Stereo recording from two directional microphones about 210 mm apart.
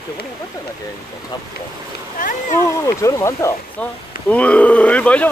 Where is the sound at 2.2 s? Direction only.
40° left (ahead or behind).